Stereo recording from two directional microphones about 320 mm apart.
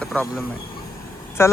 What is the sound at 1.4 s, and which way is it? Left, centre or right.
Speech, centre.